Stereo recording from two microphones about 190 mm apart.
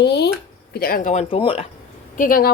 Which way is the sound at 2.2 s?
50° left (ahead or behind).